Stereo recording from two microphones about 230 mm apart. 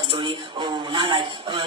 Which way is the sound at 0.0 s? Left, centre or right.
Right.